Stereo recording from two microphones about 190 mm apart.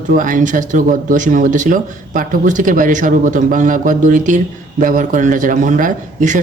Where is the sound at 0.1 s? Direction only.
45° right (ahead or behind).